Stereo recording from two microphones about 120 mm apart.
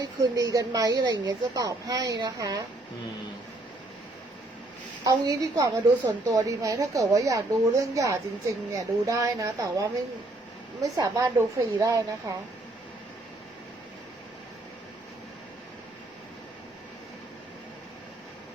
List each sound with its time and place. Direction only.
0.0 s speech: 30° right (ahead or behind)
5.0 s a woman's voice: 30° right (ahead or behind)